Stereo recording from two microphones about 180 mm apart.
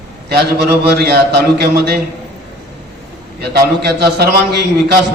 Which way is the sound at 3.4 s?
65° right (ahead or behind).